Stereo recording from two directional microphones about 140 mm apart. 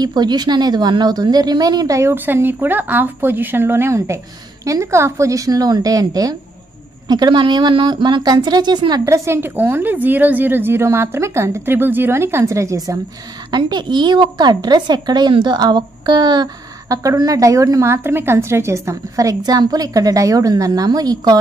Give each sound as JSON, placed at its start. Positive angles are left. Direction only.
{"t": 0.0, "sound": "a woman's voice", "side_deg": -30}
{"t": 9.0, "sound": "a woman's voice", "side_deg": -20}